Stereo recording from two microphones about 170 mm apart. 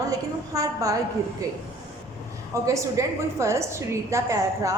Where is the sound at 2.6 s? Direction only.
20° right (ahead or behind).